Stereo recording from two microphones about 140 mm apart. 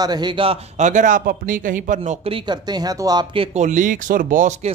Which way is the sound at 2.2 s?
35° right (ahead or behind).